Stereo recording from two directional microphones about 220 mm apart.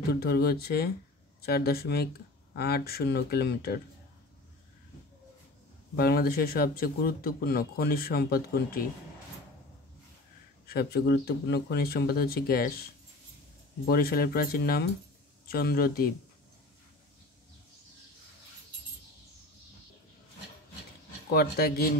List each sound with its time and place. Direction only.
0.1 s speech: 45° left (ahead or behind)
5.9 s speech: 45° left (ahead or behind)
10.7 s speech: 45° left (ahead or behind)
13.8 s speech: 45° left (ahead or behind)
21.3 s speech: 45° left (ahead or behind)